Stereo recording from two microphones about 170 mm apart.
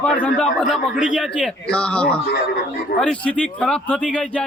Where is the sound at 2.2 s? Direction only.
70° left (ahead or behind).